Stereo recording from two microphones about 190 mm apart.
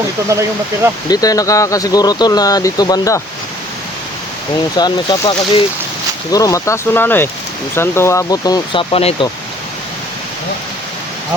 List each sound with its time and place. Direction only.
0.3 s speech: 15° right (ahead or behind)
1.0 s speech: 20° left (ahead or behind)
4.8 s speech: 25° left (ahead or behind)